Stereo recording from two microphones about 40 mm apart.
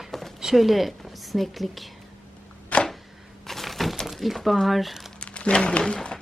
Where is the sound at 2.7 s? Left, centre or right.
Left.